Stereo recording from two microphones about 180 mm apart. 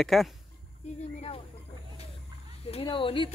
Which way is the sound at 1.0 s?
35° left (ahead or behind).